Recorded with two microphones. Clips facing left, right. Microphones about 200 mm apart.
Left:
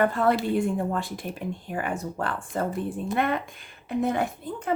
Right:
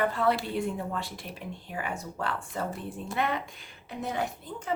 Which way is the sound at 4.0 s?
55° left (ahead or behind).